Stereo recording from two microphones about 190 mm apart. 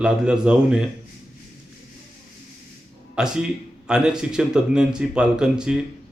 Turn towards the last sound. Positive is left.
turn(degrees=-5)  # may be behind; listen again after turning